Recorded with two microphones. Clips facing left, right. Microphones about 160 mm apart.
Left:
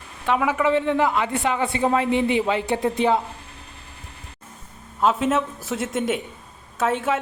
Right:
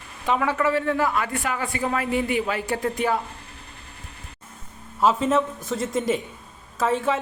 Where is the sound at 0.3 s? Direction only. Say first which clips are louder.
Left 2 dB; 10° left (ahead or behind).